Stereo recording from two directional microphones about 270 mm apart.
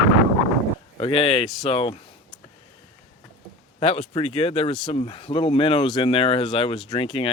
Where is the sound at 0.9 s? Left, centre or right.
Centre.